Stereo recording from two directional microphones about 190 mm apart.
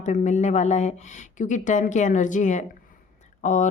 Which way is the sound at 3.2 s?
40° left (ahead or behind).